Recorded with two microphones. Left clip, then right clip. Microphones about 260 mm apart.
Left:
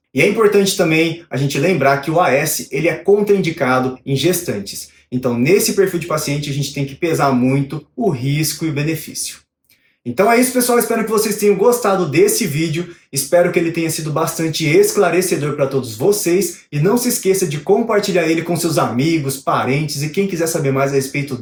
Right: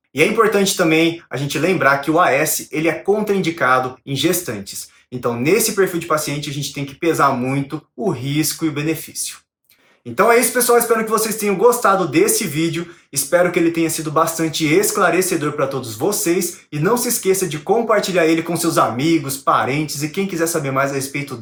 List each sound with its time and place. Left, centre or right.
0.1 s speech: centre